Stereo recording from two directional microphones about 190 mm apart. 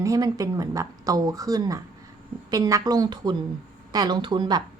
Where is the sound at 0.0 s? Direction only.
20° right (ahead or behind).